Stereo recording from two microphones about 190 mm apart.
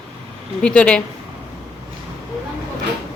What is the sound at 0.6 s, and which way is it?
Speech, 5° left (ahead or behind).